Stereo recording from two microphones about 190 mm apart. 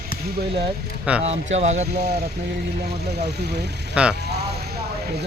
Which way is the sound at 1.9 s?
55° right (ahead or behind).